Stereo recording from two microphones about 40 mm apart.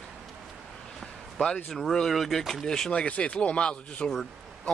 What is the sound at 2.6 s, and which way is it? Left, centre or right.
Speech, centre.